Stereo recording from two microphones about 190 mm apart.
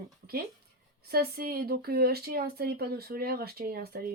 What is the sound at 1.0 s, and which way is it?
Speech, 55° right (ahead or behind).